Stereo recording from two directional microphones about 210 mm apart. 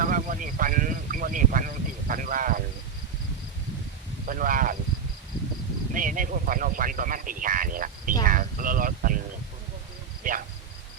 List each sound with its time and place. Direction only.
0.0 s a sound: 40° right (ahead or behind)
4.3 s speech: 40° right (ahead or behind)
5.9 s speech: 40° right (ahead or behind)
10.3 s speech: 40° right (ahead or behind)